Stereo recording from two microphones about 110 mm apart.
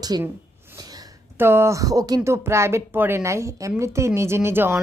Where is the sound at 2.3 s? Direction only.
25° right (ahead or behind).